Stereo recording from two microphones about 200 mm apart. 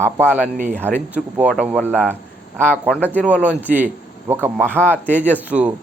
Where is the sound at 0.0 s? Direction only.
10° right (ahead or behind).